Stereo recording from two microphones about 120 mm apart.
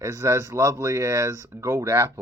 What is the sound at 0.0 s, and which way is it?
Speech, 20° right (ahead or behind).